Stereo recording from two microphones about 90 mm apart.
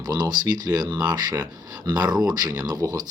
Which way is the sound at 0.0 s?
50° right (ahead or behind).